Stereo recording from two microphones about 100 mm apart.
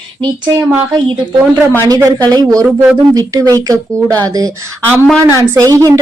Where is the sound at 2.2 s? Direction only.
40° right (ahead or behind).